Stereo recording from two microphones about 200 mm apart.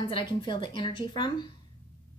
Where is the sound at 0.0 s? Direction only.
25° left (ahead or behind).